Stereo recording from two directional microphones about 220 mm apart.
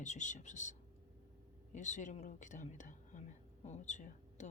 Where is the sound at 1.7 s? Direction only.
35° left (ahead or behind).